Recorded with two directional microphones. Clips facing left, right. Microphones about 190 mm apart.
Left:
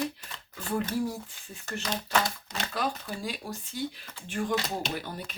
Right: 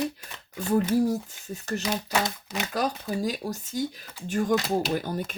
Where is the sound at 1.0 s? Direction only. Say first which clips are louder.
Right 7 dB; 40° right (ahead or behind).